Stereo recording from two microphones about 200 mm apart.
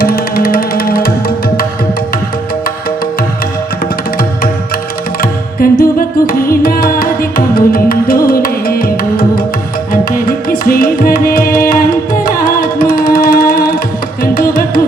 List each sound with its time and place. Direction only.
0.0 s music: 45° left (ahead or behind)
5.2 s music: 45° left (ahead or behind)